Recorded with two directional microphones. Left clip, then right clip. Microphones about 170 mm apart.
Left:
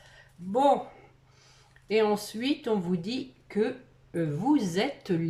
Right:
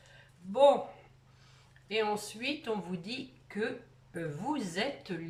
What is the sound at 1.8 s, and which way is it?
Speech, 35° left (ahead or behind).